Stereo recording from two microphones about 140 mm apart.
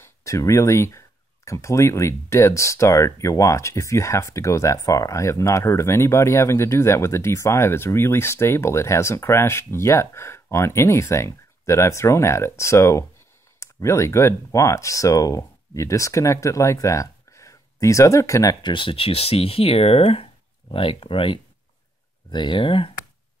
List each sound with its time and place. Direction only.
0.0 s speech: 20° left (ahead or behind); by 22.8 s 40° left (ahead or behind)